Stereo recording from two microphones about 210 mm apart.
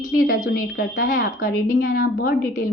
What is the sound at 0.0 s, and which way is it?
A woman's voice, 40° left (ahead or behind).